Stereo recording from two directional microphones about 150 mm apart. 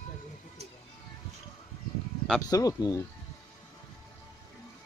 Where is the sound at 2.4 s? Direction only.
25° left (ahead or behind).